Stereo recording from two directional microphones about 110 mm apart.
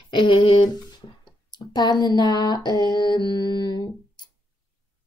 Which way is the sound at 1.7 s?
40° left (ahead or behind).